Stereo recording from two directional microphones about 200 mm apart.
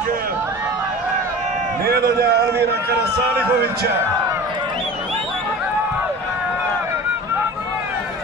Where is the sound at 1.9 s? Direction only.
50° right (ahead or behind).